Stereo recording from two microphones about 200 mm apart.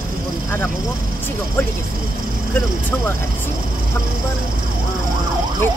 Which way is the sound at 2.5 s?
10° left (ahead or behind).